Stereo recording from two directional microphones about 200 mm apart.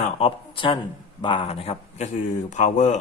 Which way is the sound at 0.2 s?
25° left (ahead or behind).